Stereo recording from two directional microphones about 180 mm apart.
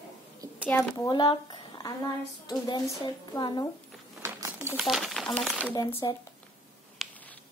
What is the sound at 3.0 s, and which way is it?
Speech, 25° left (ahead or behind).